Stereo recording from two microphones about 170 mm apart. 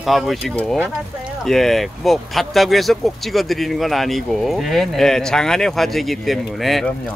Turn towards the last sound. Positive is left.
turn(degrees=0)  # may be behind; listen again after turning